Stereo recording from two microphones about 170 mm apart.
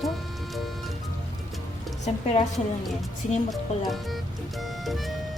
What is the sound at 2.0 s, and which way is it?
Speech, 40° left (ahead or behind).